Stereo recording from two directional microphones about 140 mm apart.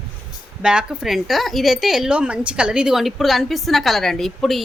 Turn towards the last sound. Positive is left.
turn(degrees=0)  # may be behind; listen again after turning